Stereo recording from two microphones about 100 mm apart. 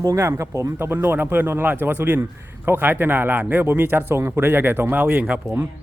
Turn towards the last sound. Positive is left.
turn(degrees=-15)  # may be behind; listen again after turning